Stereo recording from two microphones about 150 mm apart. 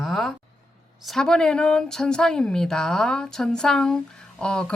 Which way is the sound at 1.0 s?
5° left (ahead or behind).